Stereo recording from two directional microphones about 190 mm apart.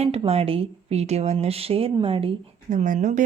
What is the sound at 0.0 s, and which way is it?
Speech, 30° right (ahead or behind).